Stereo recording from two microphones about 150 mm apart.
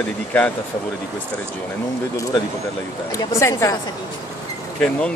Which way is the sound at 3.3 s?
20° left (ahead or behind).